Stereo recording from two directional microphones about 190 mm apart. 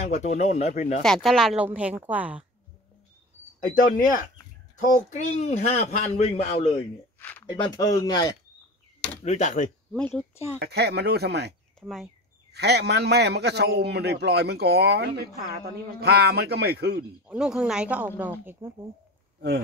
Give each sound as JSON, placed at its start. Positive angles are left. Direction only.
{"t": 0.1, "sound": "a man's voice", "side_deg": 35}
{"t": 1.0, "sound": "speech", "side_deg": 0}
{"t": 3.7, "sound": "a man's voice", "side_deg": 45}
{"t": 7.2, "sound": "a sound", "side_deg": 10}
{"t": 7.7, "sound": "speech", "side_deg": 20}
{"t": 9.2, "sound": "a man's voice", "side_deg": 40}
{"t": 9.9, "sound": "speech", "side_deg": 5}
{"t": 10.6, "sound": "a man's voice", "side_deg": -60}
{"t": 11.8, "sound": "speech", "side_deg": 0}
{"t": 12.5, "sound": "a man's voice", "side_deg": -60}
{"t": 17.3, "sound": "speech", "side_deg": -5}